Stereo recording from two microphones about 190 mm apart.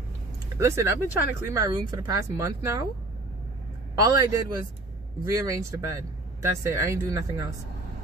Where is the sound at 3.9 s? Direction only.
20° right (ahead or behind).